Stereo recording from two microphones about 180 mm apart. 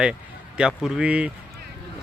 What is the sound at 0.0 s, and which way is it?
Speech, 5° right (ahead or behind).